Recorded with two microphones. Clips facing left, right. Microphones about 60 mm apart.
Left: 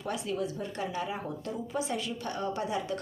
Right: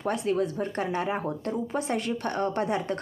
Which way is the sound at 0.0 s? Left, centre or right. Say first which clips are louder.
Right 6 dB; right.